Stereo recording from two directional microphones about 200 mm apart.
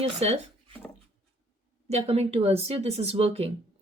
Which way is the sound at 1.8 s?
30° right (ahead or behind).